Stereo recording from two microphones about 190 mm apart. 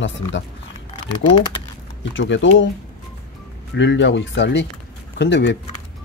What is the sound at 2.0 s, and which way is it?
Speech, 75° left (ahead or behind).